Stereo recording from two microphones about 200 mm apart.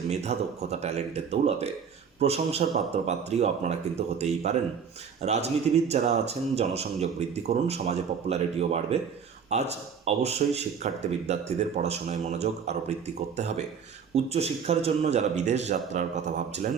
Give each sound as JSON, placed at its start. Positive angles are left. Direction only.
{"t": 0.1, "sound": "speech", "side_deg": -35}
{"t": 14.1, "sound": "speech", "side_deg": -30}